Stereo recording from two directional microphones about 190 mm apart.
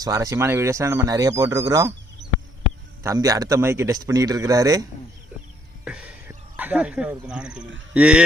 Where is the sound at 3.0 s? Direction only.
20° right (ahead or behind).